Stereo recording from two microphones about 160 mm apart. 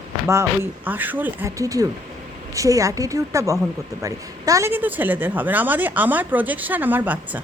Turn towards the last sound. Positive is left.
turn(degrees=-10)  # may be behind; listen again after turning